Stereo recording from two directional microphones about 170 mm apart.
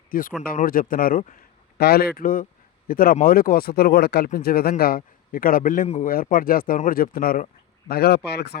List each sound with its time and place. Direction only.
0.1 s speech: 55° left (ahead or behind); by 8.5 s 75° left (ahead or behind)